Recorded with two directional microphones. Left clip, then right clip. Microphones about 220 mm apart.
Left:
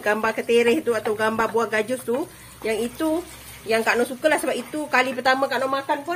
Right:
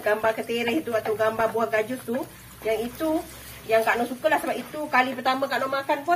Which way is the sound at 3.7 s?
50° left (ahead or behind).